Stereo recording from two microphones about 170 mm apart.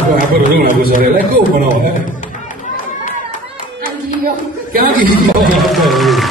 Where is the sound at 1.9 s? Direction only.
50° left (ahead or behind).